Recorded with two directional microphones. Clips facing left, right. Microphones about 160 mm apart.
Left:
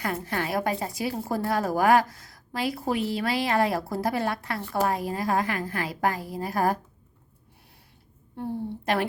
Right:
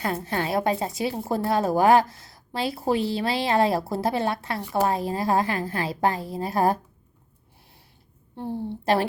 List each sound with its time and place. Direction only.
0.0 s a woman's voice: 25° right (ahead or behind)
4.6 s speech: 15° right (ahead or behind)
4.9 s a woman's voice: 25° right (ahead or behind)
8.4 s a woman's voice: 30° right (ahead or behind)